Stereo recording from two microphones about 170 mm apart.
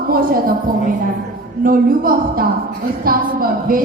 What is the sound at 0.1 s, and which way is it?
Speech, 60° right (ahead or behind).